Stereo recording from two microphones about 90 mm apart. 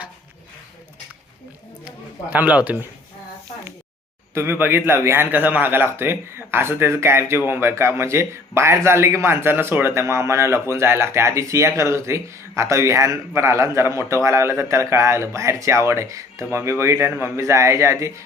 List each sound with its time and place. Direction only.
2.3 s a man's voice: 15° right (ahead or behind)
4.4 s a man's voice: 25° right (ahead or behind)